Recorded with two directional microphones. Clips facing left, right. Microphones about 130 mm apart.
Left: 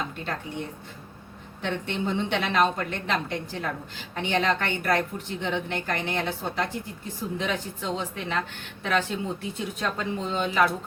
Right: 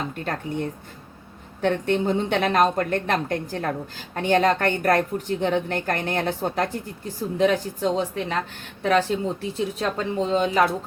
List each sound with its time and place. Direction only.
1.6 s a woman's voice: 45° right (ahead or behind)